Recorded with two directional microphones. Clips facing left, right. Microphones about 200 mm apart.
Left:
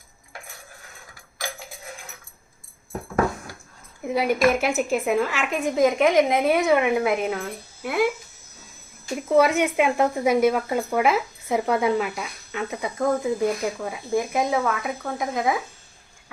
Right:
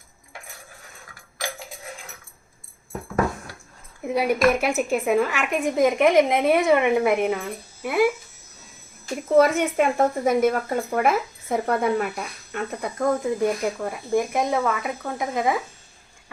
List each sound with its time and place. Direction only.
4.0 s speech: centre (ahead or behind)
9.4 s speech: 10° left (ahead or behind)